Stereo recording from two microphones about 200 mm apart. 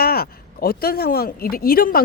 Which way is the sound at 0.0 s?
50° left (ahead or behind).